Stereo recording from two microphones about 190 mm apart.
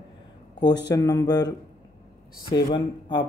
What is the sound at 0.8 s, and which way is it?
Speech, 20° left (ahead or behind).